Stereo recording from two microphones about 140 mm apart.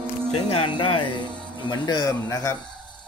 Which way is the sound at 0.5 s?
35° left (ahead or behind).